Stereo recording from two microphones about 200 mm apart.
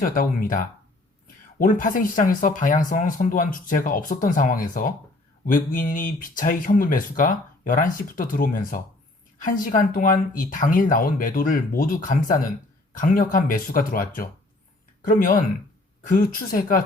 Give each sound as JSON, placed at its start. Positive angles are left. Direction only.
{"t": 0.0, "sound": "speech", "side_deg": 45}